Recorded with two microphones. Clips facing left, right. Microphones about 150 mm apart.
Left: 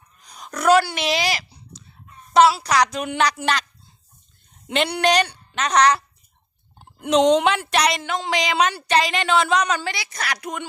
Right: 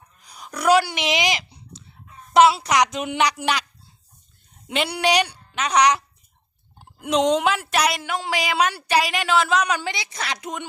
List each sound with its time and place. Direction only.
0.3 s a sound: 10° right (ahead or behind)
2.3 s a woman's voice: 20° right (ahead or behind)
4.7 s a woman's voice: 5° right (ahead or behind)